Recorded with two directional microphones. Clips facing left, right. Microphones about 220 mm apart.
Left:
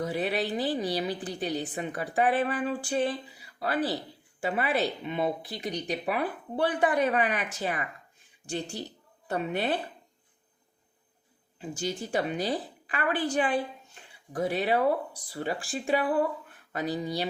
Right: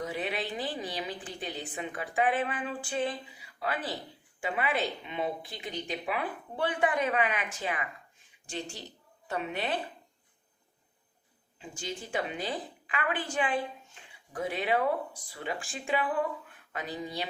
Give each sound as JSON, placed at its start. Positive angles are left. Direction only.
{"t": 0.0, "sound": "a woman's voice", "side_deg": 40}
{"t": 9.2, "sound": "a woman's voice", "side_deg": 40}
{"t": 11.6, "sound": "a woman's voice", "side_deg": 40}